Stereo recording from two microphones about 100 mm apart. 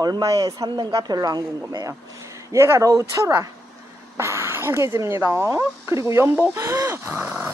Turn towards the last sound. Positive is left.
turn(degrees=-15)  # may be behind; listen again after turning